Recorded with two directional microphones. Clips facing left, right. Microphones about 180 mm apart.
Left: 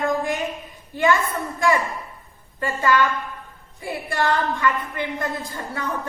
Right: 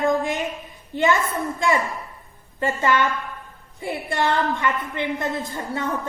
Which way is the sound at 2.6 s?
20° right (ahead or behind).